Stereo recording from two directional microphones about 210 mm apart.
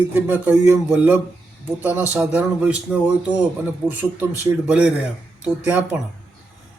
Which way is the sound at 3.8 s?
5° right (ahead or behind).